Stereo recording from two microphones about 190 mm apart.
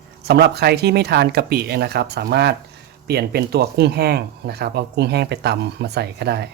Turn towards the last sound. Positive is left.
turn(degrees=-60)  # may be behind; listen again after turning